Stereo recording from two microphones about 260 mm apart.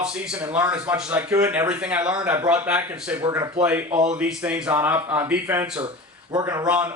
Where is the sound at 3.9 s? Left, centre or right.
Right.